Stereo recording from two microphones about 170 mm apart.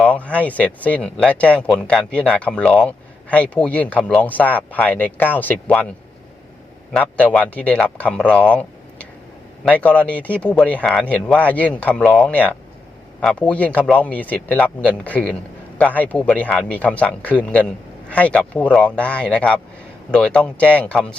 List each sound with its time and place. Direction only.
0.0 s speech: 10° left (ahead or behind)
6.9 s speech: 10° left (ahead or behind)